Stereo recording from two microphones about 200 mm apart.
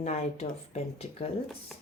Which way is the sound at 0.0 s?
35° left (ahead or behind).